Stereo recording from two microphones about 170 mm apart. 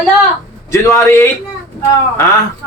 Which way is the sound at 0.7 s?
15° left (ahead or behind).